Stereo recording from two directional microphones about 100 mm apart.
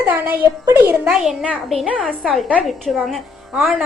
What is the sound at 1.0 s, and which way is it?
A child's voice, 10° right (ahead or behind).